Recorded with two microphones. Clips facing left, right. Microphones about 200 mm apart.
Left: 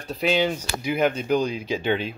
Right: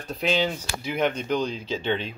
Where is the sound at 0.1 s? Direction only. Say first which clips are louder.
Left 3 dB; 5° left (ahead or behind).